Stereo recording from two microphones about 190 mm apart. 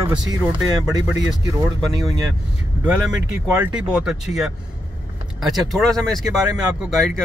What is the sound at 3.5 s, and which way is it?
Speech, 5° right (ahead or behind).